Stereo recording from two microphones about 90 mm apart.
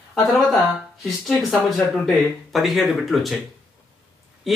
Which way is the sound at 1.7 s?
Centre (ahead or behind).